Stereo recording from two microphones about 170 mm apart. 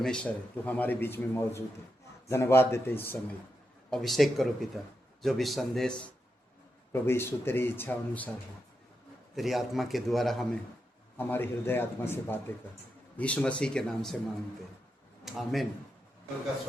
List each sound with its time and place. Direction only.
0.0 s a man's voice: 5° left (ahead or behind)
6.9 s speech: 15° left (ahead or behind)
9.3 s a man's voice: centre (ahead or behind)
11.2 s speech: 10° left (ahead or behind)
15.2 s speech: centre (ahead or behind)